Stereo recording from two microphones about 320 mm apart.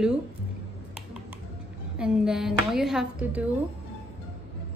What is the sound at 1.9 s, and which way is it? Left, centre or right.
A woman's voice, centre.